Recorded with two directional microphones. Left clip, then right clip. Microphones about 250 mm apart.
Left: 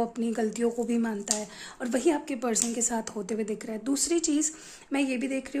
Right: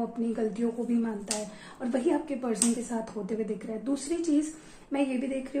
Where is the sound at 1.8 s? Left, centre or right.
Left.